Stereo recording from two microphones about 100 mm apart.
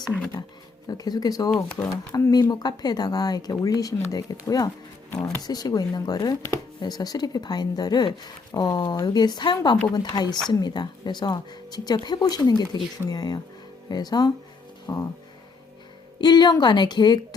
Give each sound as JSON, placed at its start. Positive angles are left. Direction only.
{"t": 0.9, "sound": "speech", "side_deg": 40}
{"t": 5.1, "sound": "speech", "side_deg": 25}
{"t": 5.4, "sound": "speech", "side_deg": 40}
{"t": 16.2, "sound": "speech", "side_deg": 45}